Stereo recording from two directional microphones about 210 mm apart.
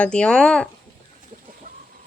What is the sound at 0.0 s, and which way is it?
Speech, 5° left (ahead or behind).